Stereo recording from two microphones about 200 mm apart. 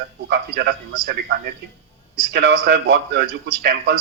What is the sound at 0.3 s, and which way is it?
A man's voice, 60° right (ahead or behind).